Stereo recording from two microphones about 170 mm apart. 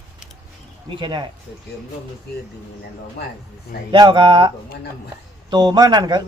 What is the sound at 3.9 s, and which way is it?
Speech, 30° right (ahead or behind).